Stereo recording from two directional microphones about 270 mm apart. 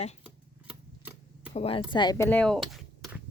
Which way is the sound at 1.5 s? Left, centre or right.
Left.